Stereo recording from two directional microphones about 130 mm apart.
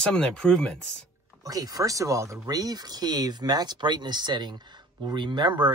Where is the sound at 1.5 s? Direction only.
25° right (ahead or behind).